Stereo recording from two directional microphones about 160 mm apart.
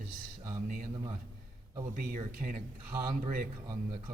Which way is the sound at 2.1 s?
60° right (ahead or behind).